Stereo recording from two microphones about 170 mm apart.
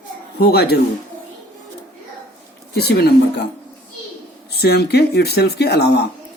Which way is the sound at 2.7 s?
70° left (ahead or behind).